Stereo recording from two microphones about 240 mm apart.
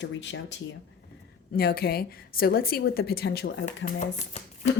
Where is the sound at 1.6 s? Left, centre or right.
Left.